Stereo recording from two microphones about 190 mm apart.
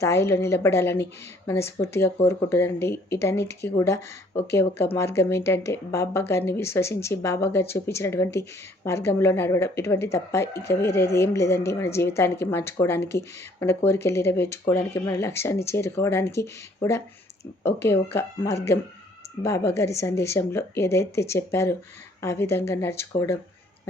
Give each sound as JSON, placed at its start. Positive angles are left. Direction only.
{"t": 0.0, "sound": "speech", "side_deg": 15}
{"t": 10.4, "sound": "speech", "side_deg": 60}
{"t": 10.7, "sound": "speech", "side_deg": 15}
{"t": 11.0, "sound": "speech", "side_deg": 60}
{"t": 11.3, "sound": "speech", "side_deg": 15}